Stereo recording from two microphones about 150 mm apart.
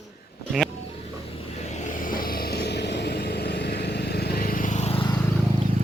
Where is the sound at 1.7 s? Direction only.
55° left (ahead or behind).